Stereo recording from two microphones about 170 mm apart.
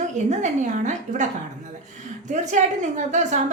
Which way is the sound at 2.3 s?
45° right (ahead or behind).